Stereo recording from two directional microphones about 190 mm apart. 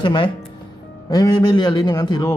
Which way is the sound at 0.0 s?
25° left (ahead or behind).